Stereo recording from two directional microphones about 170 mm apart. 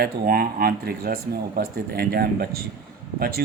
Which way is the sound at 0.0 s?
60° right (ahead or behind).